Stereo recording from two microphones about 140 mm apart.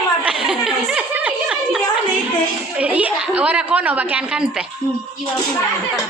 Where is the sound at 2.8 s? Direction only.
10° right (ahead or behind).